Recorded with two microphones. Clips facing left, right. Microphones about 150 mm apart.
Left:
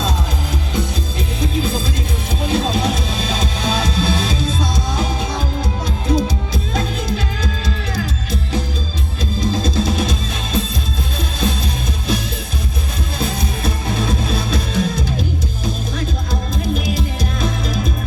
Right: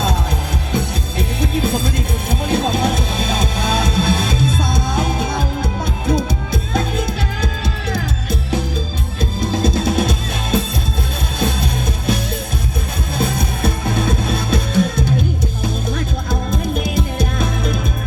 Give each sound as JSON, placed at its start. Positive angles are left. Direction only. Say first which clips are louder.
{"t": 1.4, "sound": "music", "louder": "right 2 dB", "side_deg": -60}
{"t": 9.4, "sound": "music", "louder": "right 1 dB", "side_deg": -60}
{"t": 16.3, "sound": "music", "louder": "right 3 dB", "side_deg": -55}